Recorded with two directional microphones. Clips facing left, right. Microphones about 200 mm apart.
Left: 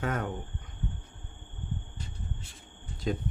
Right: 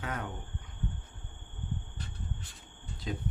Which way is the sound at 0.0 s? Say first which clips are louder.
Left 6 dB; 50° left (ahead or behind).